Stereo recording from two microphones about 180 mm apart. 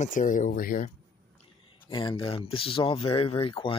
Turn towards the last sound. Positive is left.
turn(degrees=25)  # may be behind; listen again after turning